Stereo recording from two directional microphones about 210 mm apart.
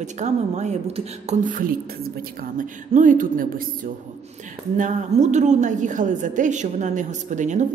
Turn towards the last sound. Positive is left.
turn(degrees=-35)  # may be behind; listen again after turning